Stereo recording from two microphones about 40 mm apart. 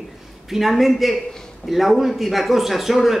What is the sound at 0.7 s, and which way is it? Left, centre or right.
Speech, centre.